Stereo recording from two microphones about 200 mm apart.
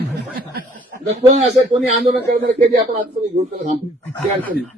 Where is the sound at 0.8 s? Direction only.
35° right (ahead or behind).